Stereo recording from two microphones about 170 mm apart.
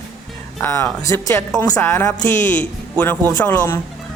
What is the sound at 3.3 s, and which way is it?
Speech, 10° left (ahead or behind).